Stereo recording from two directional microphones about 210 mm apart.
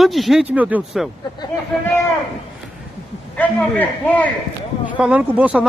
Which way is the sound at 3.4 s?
5° left (ahead or behind).